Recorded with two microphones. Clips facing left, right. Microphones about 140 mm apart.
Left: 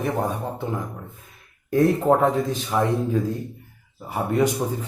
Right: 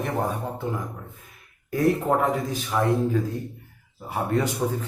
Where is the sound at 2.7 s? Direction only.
15° left (ahead or behind).